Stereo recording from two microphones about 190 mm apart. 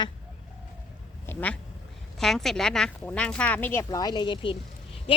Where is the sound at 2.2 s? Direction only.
Centre (ahead or behind); by 4.5 s 25° left (ahead or behind).